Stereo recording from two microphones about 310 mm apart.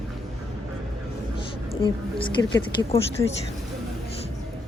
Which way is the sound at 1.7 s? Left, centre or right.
Centre.